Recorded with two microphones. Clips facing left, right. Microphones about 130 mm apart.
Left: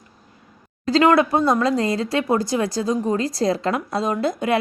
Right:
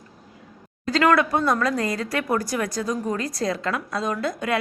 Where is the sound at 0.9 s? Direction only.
25° left (ahead or behind).